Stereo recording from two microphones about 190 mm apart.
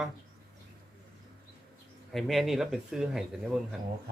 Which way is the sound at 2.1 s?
Centre (ahead or behind).